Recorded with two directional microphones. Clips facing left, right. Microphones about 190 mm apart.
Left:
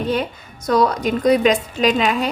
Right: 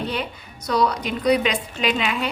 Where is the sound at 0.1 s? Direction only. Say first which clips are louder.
Left 7 dB; 45° left (ahead or behind).